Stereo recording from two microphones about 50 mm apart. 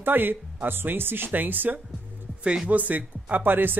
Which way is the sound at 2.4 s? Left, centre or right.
Right.